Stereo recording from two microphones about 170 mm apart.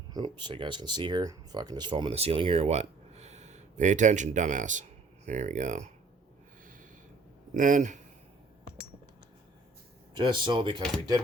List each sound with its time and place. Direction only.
0.1 s speech: 25° right (ahead or behind); by 5.9 s 45° right (ahead or behind)
7.5 s speech: 50° right (ahead or behind)
10.2 s speech: 25° right (ahead or behind)